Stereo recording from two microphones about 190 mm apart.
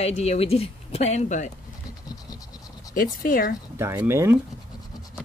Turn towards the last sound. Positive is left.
turn(degrees=-15)  # may be behind; listen again after turning